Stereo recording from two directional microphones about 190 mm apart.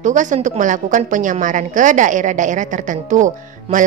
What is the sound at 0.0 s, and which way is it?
A woman's voice, 40° right (ahead or behind).